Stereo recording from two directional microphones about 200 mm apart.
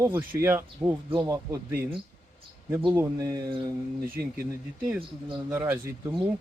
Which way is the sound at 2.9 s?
15° right (ahead or behind).